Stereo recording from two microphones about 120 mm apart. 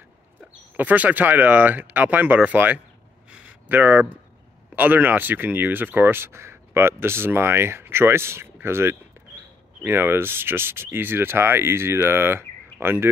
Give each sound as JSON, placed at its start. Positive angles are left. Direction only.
{"t": 0.7, "sound": "speech", "side_deg": -15}
{"t": 3.3, "sound": "a sound", "side_deg": -10}
{"t": 4.7, "sound": "speech", "side_deg": -15}